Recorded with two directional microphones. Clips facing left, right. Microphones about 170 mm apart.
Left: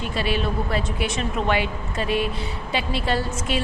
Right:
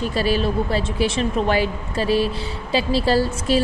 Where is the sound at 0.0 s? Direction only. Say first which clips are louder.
Right 4 dB; 40° right (ahead or behind).